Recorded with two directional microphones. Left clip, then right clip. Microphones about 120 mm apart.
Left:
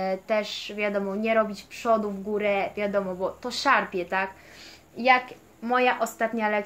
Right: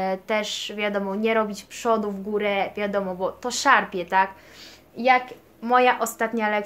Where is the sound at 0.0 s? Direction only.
30° right (ahead or behind).